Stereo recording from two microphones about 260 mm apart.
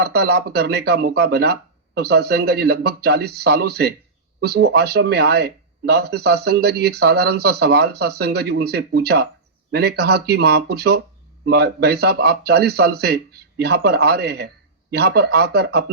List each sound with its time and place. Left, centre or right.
0.0 s speech: right